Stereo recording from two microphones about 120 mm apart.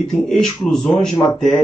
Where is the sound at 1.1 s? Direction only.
25° left (ahead or behind).